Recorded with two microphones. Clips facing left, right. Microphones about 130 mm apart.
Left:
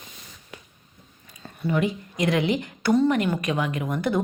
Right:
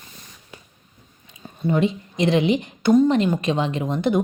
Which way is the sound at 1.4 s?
25° right (ahead or behind).